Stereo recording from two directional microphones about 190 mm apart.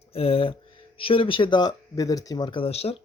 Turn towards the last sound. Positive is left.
turn(degrees=30)  # may be behind; listen again after turning